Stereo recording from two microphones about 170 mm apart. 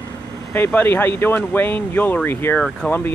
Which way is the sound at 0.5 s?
10° left (ahead or behind).